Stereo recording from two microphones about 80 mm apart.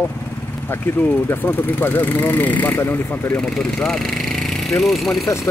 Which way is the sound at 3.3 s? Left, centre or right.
Centre.